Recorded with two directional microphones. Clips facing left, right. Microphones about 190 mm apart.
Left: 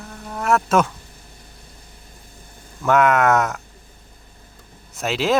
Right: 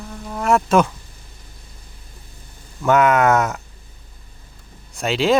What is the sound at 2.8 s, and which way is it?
Speech, centre (ahead or behind).